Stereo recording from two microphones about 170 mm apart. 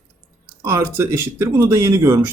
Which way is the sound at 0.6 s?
15° right (ahead or behind).